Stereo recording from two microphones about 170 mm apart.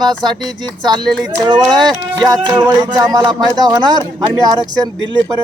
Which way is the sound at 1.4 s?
25° right (ahead or behind).